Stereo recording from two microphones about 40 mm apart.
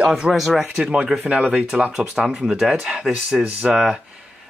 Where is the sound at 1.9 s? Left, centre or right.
Centre.